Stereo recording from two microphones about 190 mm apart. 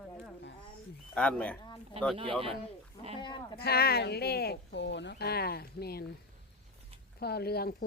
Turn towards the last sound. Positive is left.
turn(degrees=55)  # may be behind; listen again after turning